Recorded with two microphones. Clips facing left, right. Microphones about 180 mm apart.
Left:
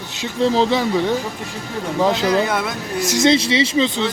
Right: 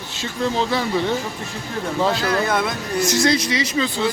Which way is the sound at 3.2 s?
25° left (ahead or behind).